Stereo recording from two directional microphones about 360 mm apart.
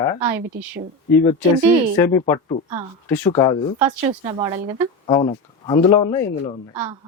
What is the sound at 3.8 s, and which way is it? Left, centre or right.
Speech, centre.